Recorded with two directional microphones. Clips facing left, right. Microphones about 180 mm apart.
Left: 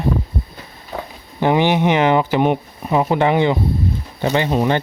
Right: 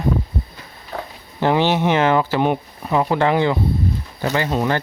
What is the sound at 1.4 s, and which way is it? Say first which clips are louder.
Speech: left 2 dB; 15° left (ahead or behind).